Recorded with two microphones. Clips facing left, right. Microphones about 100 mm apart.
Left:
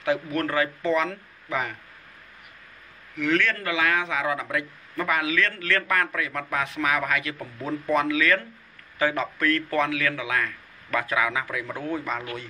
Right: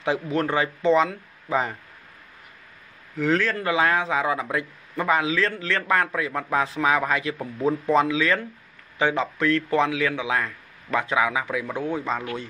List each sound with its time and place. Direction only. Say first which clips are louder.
0.0 s a man's voice: right 1 dB; 25° right (ahead or behind)
3.2 s a man's voice: right 2 dB; 30° right (ahead or behind)